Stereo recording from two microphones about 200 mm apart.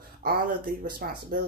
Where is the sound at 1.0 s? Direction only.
50° right (ahead or behind).